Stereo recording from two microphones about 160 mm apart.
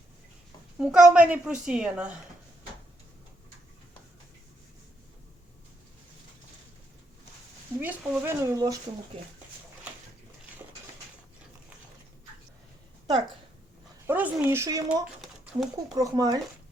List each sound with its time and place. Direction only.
0.8 s a woman's voice: 5° right (ahead or behind)
7.8 s speech: 10° right (ahead or behind)
14.1 s speech: 10° right (ahead or behind)
15.2 s a sound: centre (ahead or behind)
16.0 s speech: 25° right (ahead or behind)